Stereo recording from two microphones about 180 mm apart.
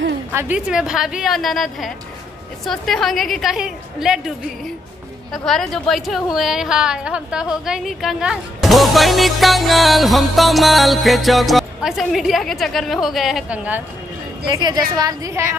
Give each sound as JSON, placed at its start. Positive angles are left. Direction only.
{"t": 0.3, "sound": "a woman's voice", "side_deg": -10}
{"t": 5.3, "sound": "a woman's voice", "side_deg": 0}
{"t": 14.4, "sound": "a woman's voice", "side_deg": -20}